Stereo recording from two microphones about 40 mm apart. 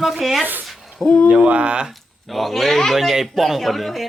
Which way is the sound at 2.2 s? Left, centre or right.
Centre.